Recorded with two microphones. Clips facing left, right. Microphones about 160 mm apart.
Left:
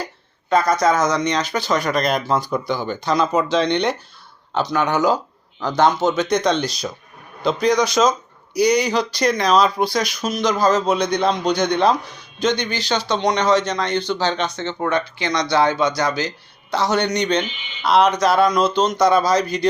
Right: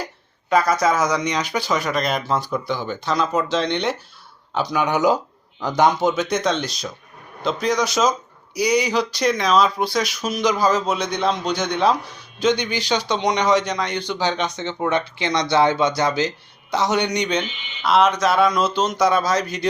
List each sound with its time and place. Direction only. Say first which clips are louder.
0.5 s speech: left 1 dB; 5° right (ahead or behind)